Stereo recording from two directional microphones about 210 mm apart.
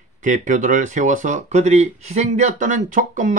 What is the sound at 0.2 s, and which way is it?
Speech, 35° right (ahead or behind).